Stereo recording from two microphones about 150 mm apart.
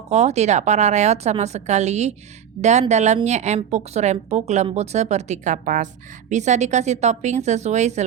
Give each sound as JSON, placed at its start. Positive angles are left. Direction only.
{"t": 0.1, "sound": "speech", "side_deg": -45}